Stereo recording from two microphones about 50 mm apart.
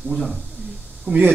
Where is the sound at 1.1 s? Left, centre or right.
Right.